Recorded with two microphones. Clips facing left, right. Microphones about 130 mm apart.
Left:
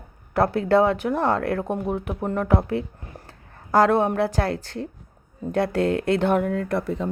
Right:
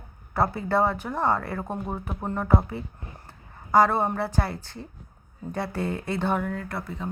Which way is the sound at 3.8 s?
90° left.